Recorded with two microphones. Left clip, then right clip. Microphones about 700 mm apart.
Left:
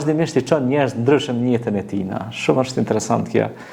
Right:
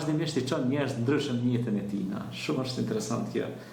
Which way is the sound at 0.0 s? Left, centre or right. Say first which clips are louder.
Left 11 dB; left.